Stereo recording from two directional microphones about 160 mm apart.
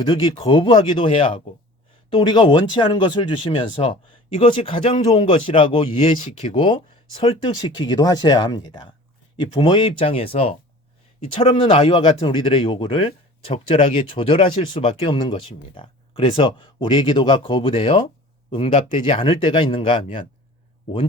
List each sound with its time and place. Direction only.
0.1 s speech: 35° left (ahead or behind)